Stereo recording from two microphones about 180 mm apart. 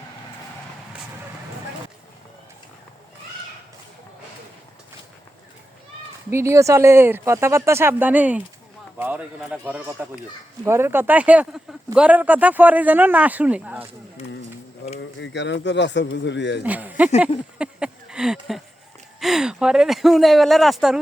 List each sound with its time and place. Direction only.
6.3 s speech: 15° right (ahead or behind)
14.8 s a sound: 70° left (ahead or behind)
15.2 s speech: 75° left (ahead or behind)
16.6 s speech: 10° right (ahead or behind)
17.6 s a sound: 5° right (ahead or behind)
19.2 s speech: centre (ahead or behind)